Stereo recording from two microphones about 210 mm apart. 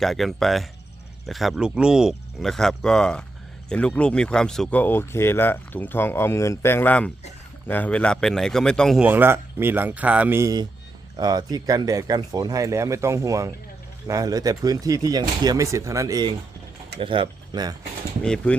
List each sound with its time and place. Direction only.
0.0 s a man's voice: centre (ahead or behind); by 17.7 s 20° right (ahead or behind)
18.2 s speech: 5° left (ahead or behind)